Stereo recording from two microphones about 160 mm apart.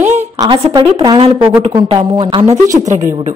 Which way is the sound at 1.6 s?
35° right (ahead or behind).